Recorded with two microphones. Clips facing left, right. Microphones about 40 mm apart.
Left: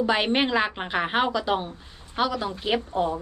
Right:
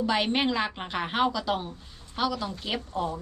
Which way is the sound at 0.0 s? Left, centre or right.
Left.